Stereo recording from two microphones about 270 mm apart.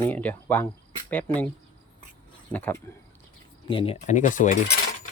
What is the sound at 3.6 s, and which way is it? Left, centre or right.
Cutlery, centre.